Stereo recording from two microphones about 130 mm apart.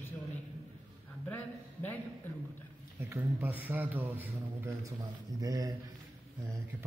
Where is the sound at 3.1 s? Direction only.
15° right (ahead or behind).